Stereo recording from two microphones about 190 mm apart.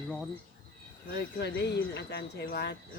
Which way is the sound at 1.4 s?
60° left (ahead or behind).